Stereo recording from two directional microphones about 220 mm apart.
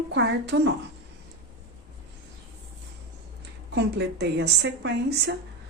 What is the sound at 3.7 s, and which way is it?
Speech, 50° right (ahead or behind).